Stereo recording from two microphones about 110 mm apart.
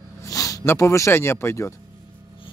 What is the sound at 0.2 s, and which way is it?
Speech, 30° left (ahead or behind).